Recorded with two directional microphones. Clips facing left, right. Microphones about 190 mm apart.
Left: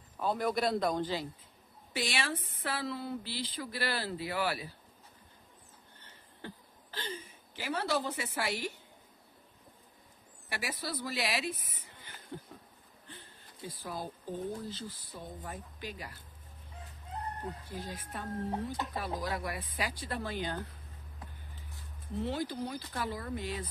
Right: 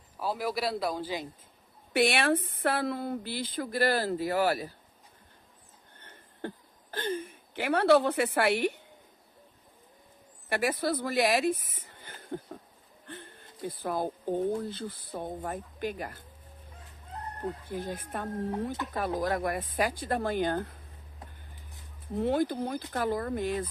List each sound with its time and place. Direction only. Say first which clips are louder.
0.2 s a man's voice: even; 5° right (ahead or behind)
2.0 s a woman's voice: right 10 dB; 60° right (ahead or behind); by 4.7 s 45° right (ahead or behind)
5.9 s a sound: right 11 dB; 50° right (ahead or behind)
10.5 s speech: right 10 dB; 55° right (ahead or behind)
17.6 s a woman's voice: right 7 dB; 55° right (ahead or behind)
22.1 s a woman's voice: right 7 dB; 50° right (ahead or behind)